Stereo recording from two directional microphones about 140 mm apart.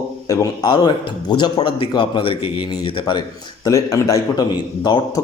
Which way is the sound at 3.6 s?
20° left (ahead or behind).